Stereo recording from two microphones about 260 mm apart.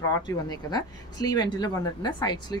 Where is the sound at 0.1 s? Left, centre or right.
Centre.